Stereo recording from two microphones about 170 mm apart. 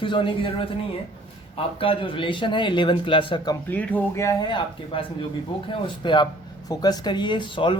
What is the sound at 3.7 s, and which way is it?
A man's voice, 10° left (ahead or behind).